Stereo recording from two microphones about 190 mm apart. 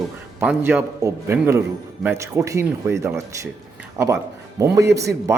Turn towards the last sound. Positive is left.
turn(degrees=-15)  # may be behind; listen again after turning